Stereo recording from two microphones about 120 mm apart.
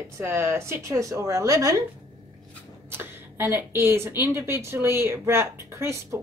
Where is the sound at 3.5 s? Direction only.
20° right (ahead or behind).